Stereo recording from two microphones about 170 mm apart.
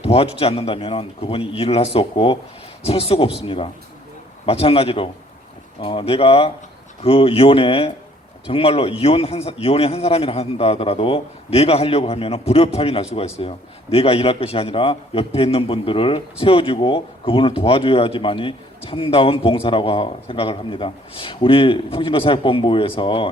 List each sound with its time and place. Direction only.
0.1 s a man's voice: 35° left (ahead or behind)